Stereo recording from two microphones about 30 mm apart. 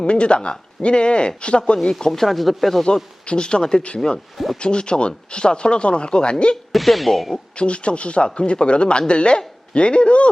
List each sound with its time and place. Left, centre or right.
0.0 s speech: left
2.0 s speech: centre
3.2 s speech: left
6.7 s speech: centre
7.5 s speech: left